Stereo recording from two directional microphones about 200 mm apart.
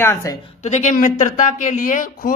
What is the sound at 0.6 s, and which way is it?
Speech, 35° left (ahead or behind).